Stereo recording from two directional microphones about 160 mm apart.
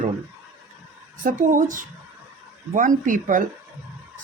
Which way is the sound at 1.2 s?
55° right (ahead or behind).